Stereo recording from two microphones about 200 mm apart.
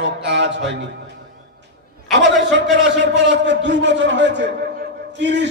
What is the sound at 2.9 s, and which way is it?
A man's voice, 60° right (ahead or behind).